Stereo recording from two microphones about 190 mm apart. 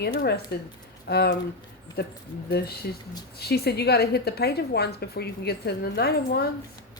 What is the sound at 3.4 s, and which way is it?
A woman's voice, 55° left (ahead or behind).